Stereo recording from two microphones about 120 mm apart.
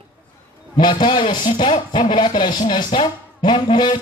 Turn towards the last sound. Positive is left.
turn(degrees=40)  # may be behind; listen again after turning